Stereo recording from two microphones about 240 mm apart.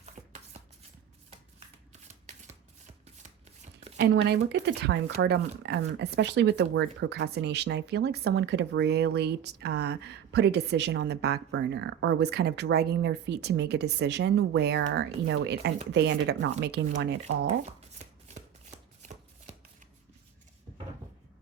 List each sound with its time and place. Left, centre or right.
0.2 s shuffling cards: right
4.1 s speech: right
17.9 s shuffling cards: right